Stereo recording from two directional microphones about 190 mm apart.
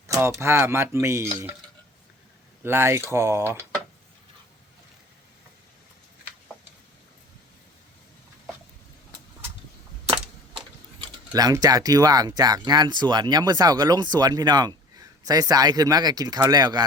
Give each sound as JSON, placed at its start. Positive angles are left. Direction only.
{"t": 0.1, "sound": "speech", "side_deg": -15}
{"t": 2.6, "sound": "speech", "side_deg": -10}
{"t": 11.3, "sound": "speech", "side_deg": -20}